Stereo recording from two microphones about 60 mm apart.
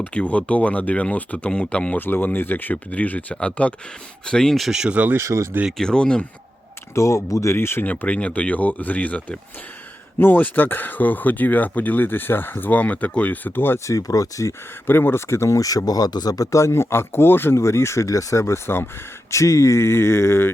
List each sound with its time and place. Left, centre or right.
0.0 s speech: left
2.0 s speech: left; by 4.5 s centre
4.5 s speech: centre
4.9 s speech: right
5.1 s speech: right
5.7 s speech: centre
6.9 s speech: left
7.5 s speech: left
7.9 s speech: left
10.2 s speech: left
13.7 s speech: left
14.8 s speech: left
19.3 s speech: left